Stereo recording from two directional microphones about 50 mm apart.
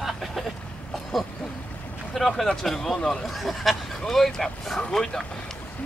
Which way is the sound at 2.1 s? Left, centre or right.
Centre.